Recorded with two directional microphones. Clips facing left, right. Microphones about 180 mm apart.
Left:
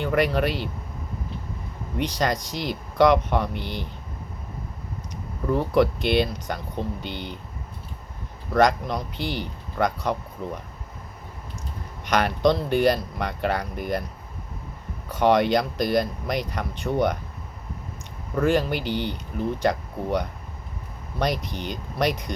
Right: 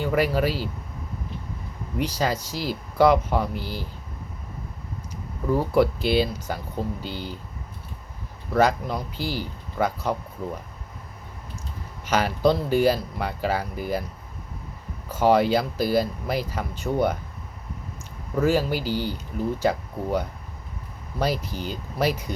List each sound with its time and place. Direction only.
0.0 s speech: 5° right (ahead or behind)
2.0 s speech: 5° right (ahead or behind)
5.5 s speech: 5° right (ahead or behind)
7.0 s speech: 65° left (ahead or behind)
8.5 s speech: 5° right (ahead or behind)
12.0 s speech: 5° right (ahead or behind)
15.1 s speech: 5° right (ahead or behind)
18.3 s speech: 5° right (ahead or behind)